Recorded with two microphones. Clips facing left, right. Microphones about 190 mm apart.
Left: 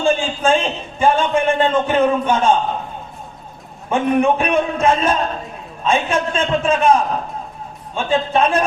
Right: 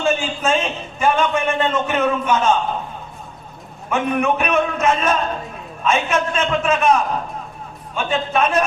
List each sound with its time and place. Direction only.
0.0 s a man's voice: 30° left (ahead or behind)
3.8 s a man's voice: 30° left (ahead or behind)